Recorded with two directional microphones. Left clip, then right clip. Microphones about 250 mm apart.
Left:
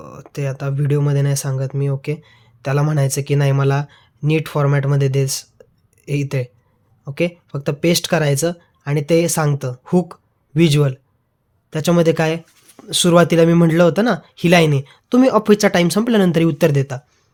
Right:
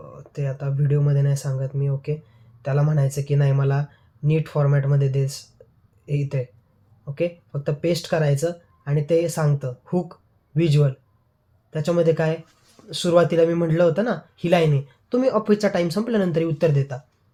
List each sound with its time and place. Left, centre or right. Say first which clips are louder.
0.0 s speech: left 5 dB; left